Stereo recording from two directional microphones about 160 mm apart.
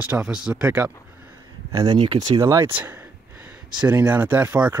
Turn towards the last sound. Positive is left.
turn(degrees=-10)  # may be behind; listen again after turning